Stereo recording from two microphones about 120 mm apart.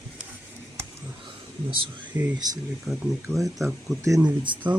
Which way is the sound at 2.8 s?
Centre (ahead or behind).